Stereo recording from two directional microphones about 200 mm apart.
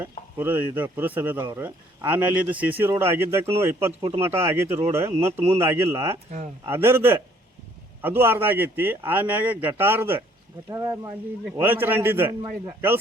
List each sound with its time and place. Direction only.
0.0 s a man's voice: 10° right (ahead or behind)